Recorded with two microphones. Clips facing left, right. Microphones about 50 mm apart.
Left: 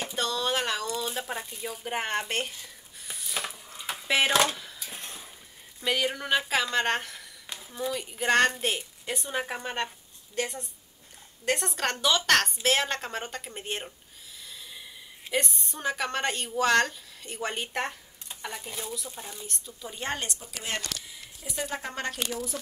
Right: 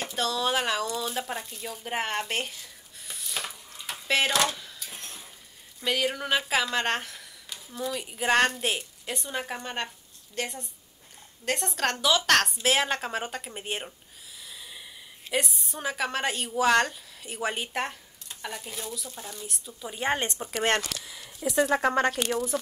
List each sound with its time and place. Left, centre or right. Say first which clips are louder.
0.0 s a woman's voice: right 2 dB; centre
2.6 s a sound: even; centre
4.3 s speech: left 2 dB; centre
5.0 s stir: left 1 dB; centre
5.8 s speech: even; centre
8.0 s a woman's voice: even; centre
15.3 s a woman's voice: even; centre
19.4 s speech: right 2 dB; centre
20.5 s speech: right 10 dB; right
21.0 s speech: right 11 dB; right
22.0 s speech: right 6 dB; right